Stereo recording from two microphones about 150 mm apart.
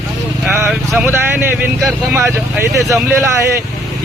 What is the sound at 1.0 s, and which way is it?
Speech, 15° right (ahead or behind).